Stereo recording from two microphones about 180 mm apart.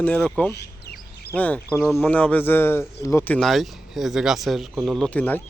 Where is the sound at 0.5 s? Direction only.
65° left (ahead or behind).